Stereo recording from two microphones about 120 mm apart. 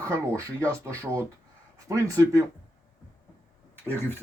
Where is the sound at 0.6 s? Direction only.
25° right (ahead or behind).